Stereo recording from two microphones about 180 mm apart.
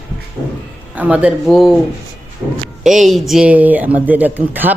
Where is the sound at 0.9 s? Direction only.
5° right (ahead or behind).